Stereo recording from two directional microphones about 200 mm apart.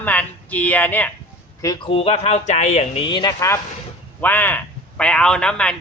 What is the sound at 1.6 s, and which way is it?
A man's voice, 25° left (ahead or behind).